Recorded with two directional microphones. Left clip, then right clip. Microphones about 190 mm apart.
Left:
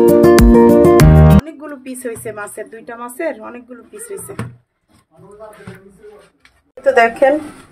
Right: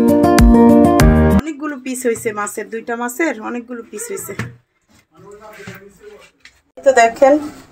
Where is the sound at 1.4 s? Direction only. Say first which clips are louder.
Right 5 dB; 30° right (ahead or behind).